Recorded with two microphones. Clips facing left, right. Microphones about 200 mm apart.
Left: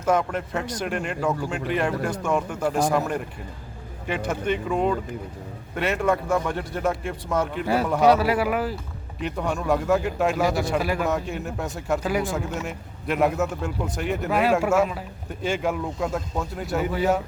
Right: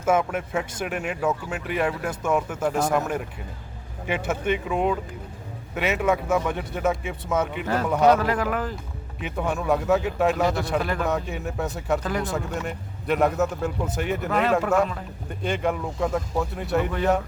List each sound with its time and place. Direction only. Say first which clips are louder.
0.0 s a man's voice: even; 5° right (ahead or behind); by 8.7 s 10° left (ahead or behind)
9.2 s speech: even; centre (ahead or behind)